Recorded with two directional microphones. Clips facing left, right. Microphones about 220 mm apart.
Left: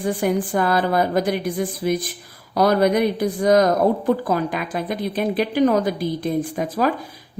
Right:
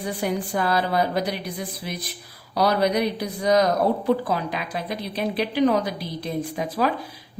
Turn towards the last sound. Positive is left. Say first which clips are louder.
# left 3 dB
turn(degrees=45)  # may be behind; listen again after turning